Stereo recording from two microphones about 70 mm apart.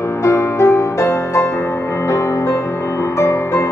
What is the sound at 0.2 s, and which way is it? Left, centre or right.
Music, left.